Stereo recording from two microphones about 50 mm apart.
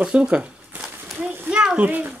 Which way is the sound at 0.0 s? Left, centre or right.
Right.